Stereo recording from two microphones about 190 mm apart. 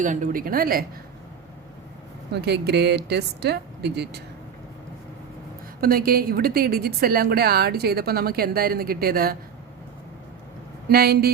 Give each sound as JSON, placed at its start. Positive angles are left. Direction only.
{"t": 0.0, "sound": "a woman's voice", "side_deg": -40}
{"t": 2.3, "sound": "speech", "side_deg": -60}
{"t": 5.8, "sound": "a woman's voice", "side_deg": -50}
{"t": 10.8, "sound": "speech", "side_deg": -55}